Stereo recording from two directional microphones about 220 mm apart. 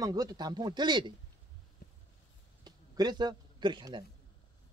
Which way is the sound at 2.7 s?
20° right (ahead or behind).